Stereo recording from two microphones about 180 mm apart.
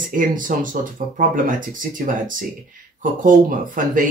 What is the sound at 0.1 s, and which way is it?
Speech, 50° right (ahead or behind).